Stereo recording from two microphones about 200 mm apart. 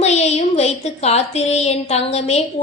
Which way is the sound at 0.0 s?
30° left (ahead or behind).